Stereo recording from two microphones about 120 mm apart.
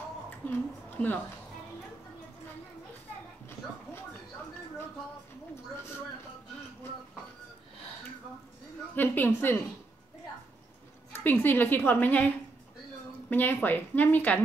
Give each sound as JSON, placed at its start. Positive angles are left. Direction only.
{"t": 0.5, "sound": "a woman's voice", "side_deg": 15}
{"t": 8.9, "sound": "a woman's voice", "side_deg": 15}
{"t": 11.4, "sound": "a woman's voice", "side_deg": 15}
{"t": 13.3, "sound": "a woman's voice", "side_deg": 15}